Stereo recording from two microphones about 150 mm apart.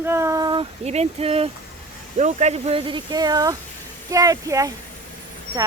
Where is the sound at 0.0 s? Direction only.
15° right (ahead or behind).